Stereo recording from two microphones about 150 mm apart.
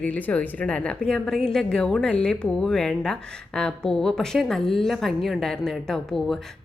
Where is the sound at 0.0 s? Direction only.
10° left (ahead or behind).